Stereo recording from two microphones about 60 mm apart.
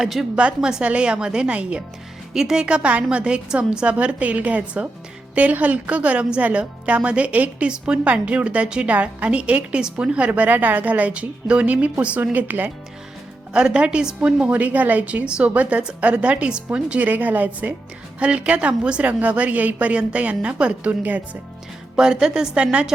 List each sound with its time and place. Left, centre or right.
0.0 s a woman's voice: centre
0.3 s a woman's voice: centre
13.5 s a woman's voice: centre
21.9 s a woman's voice: centre